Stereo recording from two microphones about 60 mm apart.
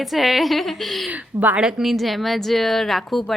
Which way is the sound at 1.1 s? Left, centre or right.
Right.